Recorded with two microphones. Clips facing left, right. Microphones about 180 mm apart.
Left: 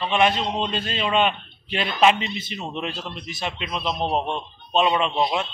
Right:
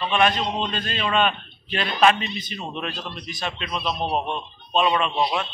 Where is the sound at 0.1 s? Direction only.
25° left (ahead or behind).